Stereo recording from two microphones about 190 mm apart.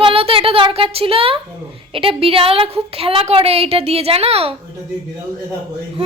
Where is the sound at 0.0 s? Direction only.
30° right (ahead or behind).